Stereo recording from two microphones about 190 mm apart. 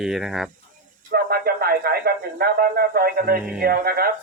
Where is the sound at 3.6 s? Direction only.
50° right (ahead or behind).